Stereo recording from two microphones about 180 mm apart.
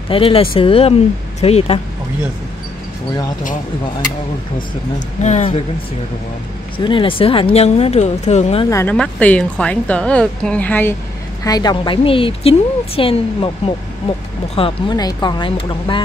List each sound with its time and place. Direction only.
0.1 s speech: 30° left (ahead or behind)
4.9 s speech: 40° left (ahead or behind)
6.8 s speech: 30° left (ahead or behind)
8.6 s a woman's voice: 15° left (ahead or behind)
8.9 s a woman's voice: 5° left (ahead or behind)
11.4 s a woman's voice: 20° left (ahead or behind)
14.5 s a woman's voice: 30° left (ahead or behind)